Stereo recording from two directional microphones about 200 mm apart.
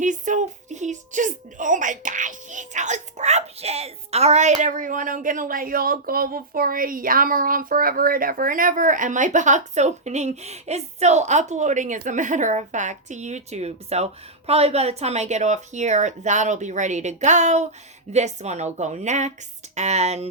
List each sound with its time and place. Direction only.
0.0 s speech: 40° right (ahead or behind)